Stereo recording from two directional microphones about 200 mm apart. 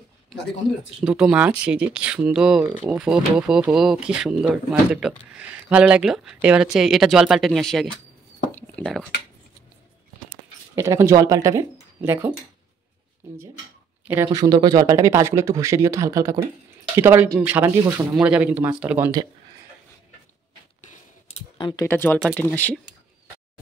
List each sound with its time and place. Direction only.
1.0 s speech: 5° right (ahead or behind)
8.5 s a sound: 10° left (ahead or behind)
10.8 s speech: 15° right (ahead or behind)
21.3 s computer keyboard: 25° left (ahead or behind)
22.2 s speech: centre (ahead or behind)